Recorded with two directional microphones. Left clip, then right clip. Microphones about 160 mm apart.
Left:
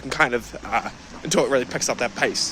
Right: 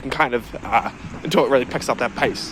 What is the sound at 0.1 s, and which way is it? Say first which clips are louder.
Speech: right 1 dB; 25° left (ahead or behind).